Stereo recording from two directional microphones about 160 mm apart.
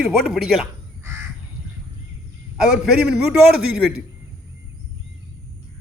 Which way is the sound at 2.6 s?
Centre (ahead or behind).